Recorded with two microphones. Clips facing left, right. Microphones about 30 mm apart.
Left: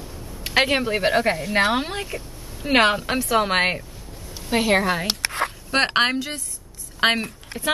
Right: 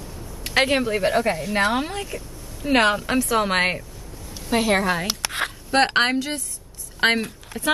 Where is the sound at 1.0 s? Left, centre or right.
Left; by 5.1 s centre.